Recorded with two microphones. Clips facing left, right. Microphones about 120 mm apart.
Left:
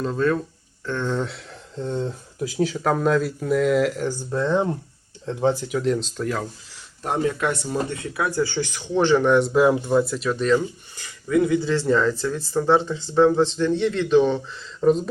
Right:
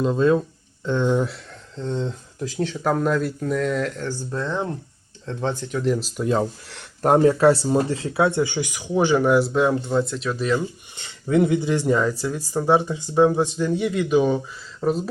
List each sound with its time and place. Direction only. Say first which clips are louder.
0.0 s speech: right 3 dB; 20° right (ahead or behind)
1.7 s speech: even; 5° left (ahead or behind)
5.9 s speech: right 2 dB; 5° right (ahead or behind)
6.2 s speech: right 8 dB; 25° right (ahead or behind)
6.7 s speech: right 9 dB; 55° right (ahead or behind); by 10.6 s 5° right (ahead or behind)
10.6 s speech: even; 25° right (ahead or behind); by 15.1 s 5° right (ahead or behind)